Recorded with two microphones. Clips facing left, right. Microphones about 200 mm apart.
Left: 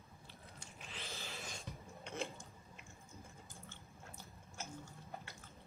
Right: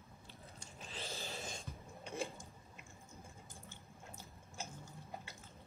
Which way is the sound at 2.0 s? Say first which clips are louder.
Right 1 dB; 15° right (ahead or behind).